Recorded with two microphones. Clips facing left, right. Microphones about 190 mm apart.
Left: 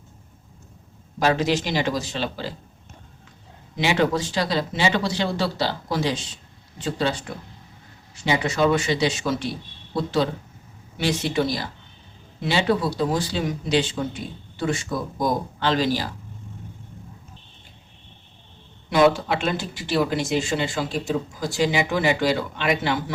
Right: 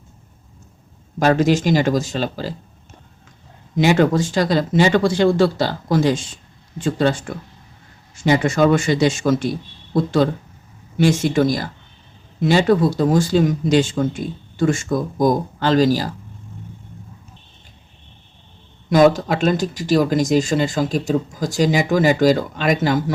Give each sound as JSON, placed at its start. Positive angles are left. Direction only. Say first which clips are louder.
{"t": 1.2, "sound": "speech", "louder": "right 6 dB", "side_deg": -45}
{"t": 3.8, "sound": "speech", "louder": "right 6 dB", "side_deg": -45}
{"t": 18.9, "sound": "speech", "louder": "right 4 dB", "side_deg": -40}